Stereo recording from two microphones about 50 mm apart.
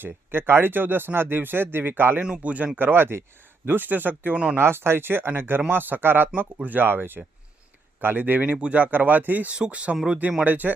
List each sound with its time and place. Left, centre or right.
0.0 s speech: right
2.4 s speech: right
2.7 s speech: right
3.7 s speech: right
4.5 s speech: right
9.6 s speech: right
10.4 s speech: right